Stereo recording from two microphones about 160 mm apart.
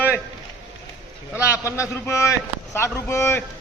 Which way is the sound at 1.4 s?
15° left (ahead or behind).